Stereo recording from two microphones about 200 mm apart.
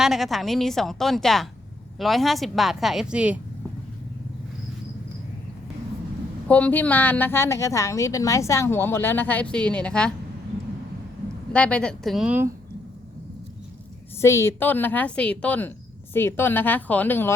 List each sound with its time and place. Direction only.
0.0 s a woman's voice: centre (ahead or behind)
6.5 s a woman's voice: 10° left (ahead or behind)
11.5 s a woman's voice: 5° left (ahead or behind)
14.2 s a woman's voice: 15° left (ahead or behind)